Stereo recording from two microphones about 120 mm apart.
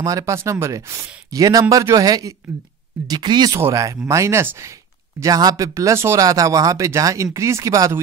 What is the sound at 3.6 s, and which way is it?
Speech, 25° right (ahead or behind).